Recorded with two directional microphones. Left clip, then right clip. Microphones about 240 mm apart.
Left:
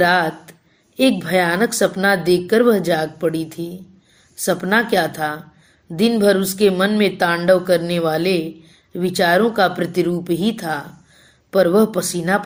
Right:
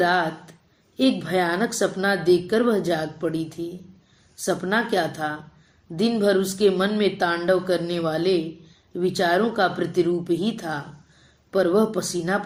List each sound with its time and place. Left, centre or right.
0.0 s speech: left